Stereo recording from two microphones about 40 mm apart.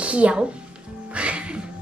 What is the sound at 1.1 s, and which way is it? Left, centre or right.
Music, right.